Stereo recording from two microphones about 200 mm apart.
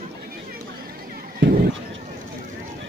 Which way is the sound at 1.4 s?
55° right (ahead or behind).